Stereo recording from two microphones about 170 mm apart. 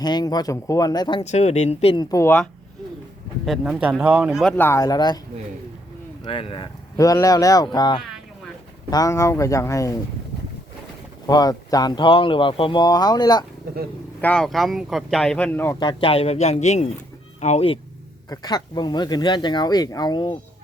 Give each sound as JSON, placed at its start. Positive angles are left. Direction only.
{"t": 0.0, "sound": "speech", "side_deg": 25}
{"t": 1.2, "sound": "speech", "side_deg": 40}
{"t": 2.0, "sound": "speech", "side_deg": 20}
{"t": 3.4, "sound": "speech", "side_deg": 0}
{"t": 4.5, "sound": "speech", "side_deg": 15}
{"t": 6.2, "sound": "speech", "side_deg": 30}
{"t": 6.9, "sound": "speech", "side_deg": 20}
{"t": 11.3, "sound": "speech", "side_deg": 25}
{"t": 14.2, "sound": "speech", "side_deg": 5}
{"t": 15.8, "sound": "speech", "side_deg": 30}
{"t": 18.3, "sound": "speech", "side_deg": 25}